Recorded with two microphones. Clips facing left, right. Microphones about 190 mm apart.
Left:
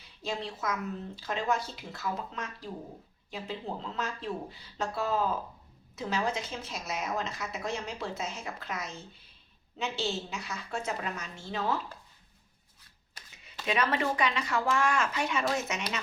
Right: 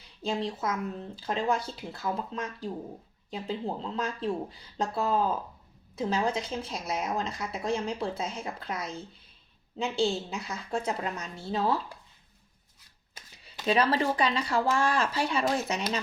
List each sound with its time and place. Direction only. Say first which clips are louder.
0.2 s speech: right 5 dB; 35° right (ahead or behind)
13.3 s speech: right 5 dB; 35° right (ahead or behind)